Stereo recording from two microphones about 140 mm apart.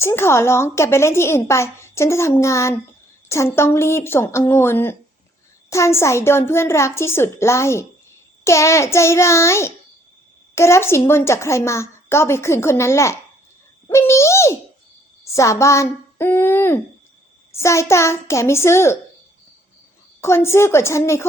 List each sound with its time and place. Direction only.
0.0 s a woman's voice: 20° left (ahead or behind)
13.9 s bird: 20° left (ahead or behind)
15.2 s a woman's voice: 20° left (ahead or behind)
20.2 s a woman's voice: 20° left (ahead or behind)